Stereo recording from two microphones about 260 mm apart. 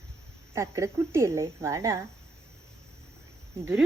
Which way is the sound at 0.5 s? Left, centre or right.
Centre.